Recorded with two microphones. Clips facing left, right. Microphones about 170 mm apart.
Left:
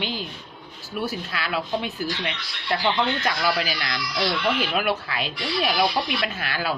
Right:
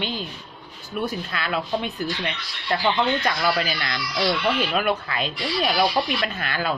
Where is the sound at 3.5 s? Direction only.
10° left (ahead or behind).